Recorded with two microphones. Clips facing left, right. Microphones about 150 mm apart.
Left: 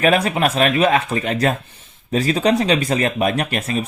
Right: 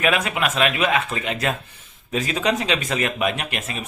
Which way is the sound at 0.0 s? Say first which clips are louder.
Left 5 dB; 35° left (ahead or behind).